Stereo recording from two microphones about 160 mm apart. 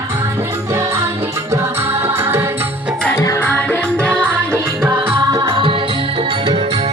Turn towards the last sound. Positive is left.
turn(degrees=-35)  # may be behind; listen again after turning